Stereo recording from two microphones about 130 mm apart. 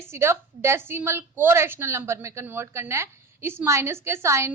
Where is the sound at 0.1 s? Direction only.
20° right (ahead or behind).